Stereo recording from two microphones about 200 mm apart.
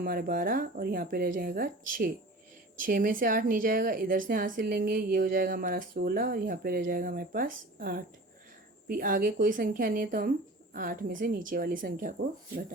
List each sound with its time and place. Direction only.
0.0 s a woman's voice: 45° right (ahead or behind)